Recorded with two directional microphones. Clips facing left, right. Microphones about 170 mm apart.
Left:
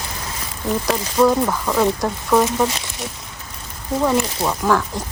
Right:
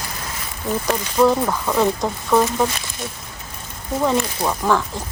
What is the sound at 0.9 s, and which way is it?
Speech, 10° left (ahead or behind).